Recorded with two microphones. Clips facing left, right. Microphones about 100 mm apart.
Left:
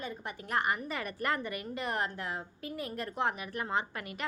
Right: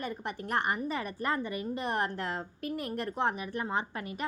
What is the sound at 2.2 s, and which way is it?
Speech, 60° right (ahead or behind).